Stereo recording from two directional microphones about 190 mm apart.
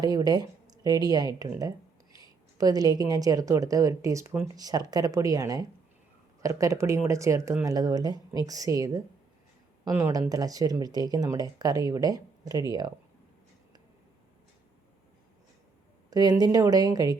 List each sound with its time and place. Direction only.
0.0 s speech: 20° right (ahead or behind)
16.0 s speech: 20° right (ahead or behind)